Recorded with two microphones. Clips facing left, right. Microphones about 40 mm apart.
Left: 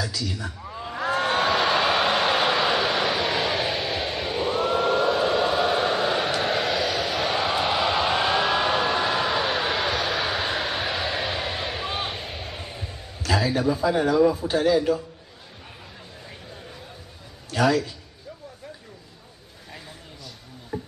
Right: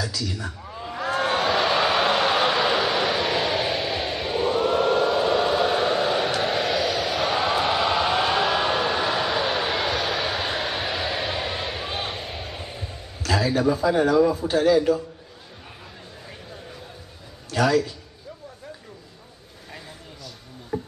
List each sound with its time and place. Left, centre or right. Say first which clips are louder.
0.0 s a sound: even; centre
14.5 s a man's voice: right 2 dB; centre
17.5 s a man's voice: right 1 dB; centre
20.7 s music: right 3 dB; centre